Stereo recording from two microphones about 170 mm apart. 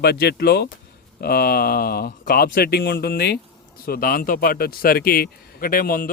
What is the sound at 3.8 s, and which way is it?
A man's voice, 60° left (ahead or behind).